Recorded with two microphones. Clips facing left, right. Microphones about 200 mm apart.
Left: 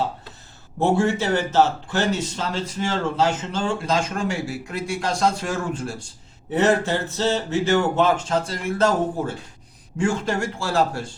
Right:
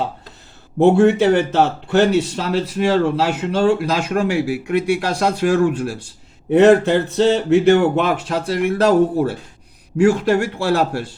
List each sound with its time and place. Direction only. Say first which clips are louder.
0.8 s a man's voice: right 8 dB; 60° right (ahead or behind)